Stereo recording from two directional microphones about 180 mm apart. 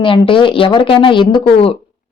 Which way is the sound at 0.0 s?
30° left (ahead or behind).